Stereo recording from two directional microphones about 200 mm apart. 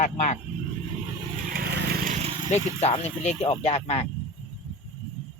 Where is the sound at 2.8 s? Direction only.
30° left (ahead or behind).